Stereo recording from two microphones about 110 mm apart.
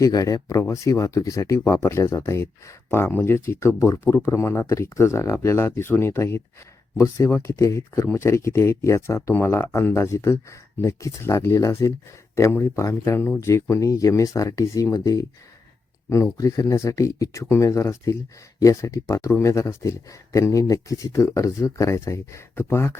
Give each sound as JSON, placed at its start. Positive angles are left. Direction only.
{"t": 0.0, "sound": "speech", "side_deg": 35}